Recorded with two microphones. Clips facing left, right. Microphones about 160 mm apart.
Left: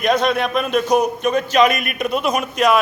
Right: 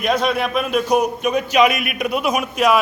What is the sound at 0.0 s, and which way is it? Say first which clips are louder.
A man's voice: left 2 dB; 5° right (ahead or behind).